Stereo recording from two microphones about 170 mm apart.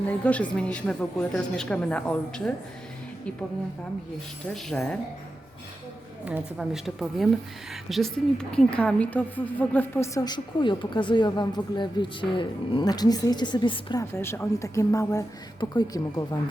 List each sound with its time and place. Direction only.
0.3 s a woman's voice: 5° left (ahead or behind)
4.4 s a woman's voice: 5° left (ahead or behind)
6.2 s a woman's voice: 5° right (ahead or behind); by 14.0 s 25° left (ahead or behind)
14.0 s a woman's voice: 15° left (ahead or behind)